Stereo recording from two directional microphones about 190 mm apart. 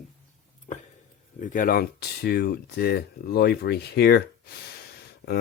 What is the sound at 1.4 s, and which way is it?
Speech, 45° left (ahead or behind).